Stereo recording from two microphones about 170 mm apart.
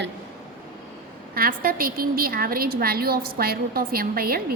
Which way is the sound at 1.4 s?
55° right (ahead or behind).